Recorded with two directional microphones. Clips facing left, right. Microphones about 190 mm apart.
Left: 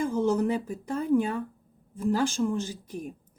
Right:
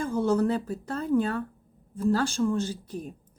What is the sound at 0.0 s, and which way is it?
Speech, 15° left (ahead or behind).